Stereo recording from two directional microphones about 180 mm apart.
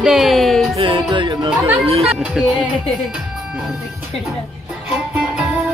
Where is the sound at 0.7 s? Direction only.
30° right (ahead or behind).